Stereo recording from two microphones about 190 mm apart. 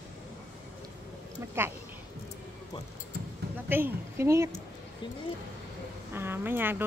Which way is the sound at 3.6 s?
10° right (ahead or behind).